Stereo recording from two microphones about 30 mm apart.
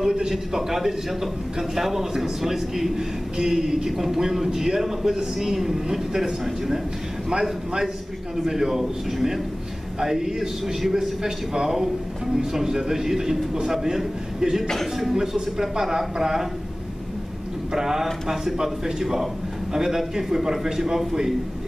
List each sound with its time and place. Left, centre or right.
0.0 s a man's voice: centre
17.7 s a man's voice: centre